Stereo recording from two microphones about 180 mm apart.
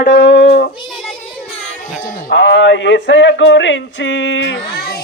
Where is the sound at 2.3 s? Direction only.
75° left (ahead or behind).